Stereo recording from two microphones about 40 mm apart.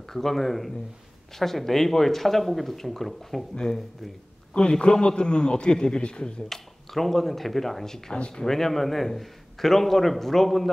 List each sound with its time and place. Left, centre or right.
0.1 s a man's voice: centre
3.5 s a man's voice: centre
6.5 s a man's voice: centre